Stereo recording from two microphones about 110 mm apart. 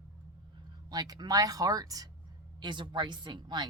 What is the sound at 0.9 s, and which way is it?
A woman's voice, 40° right (ahead or behind).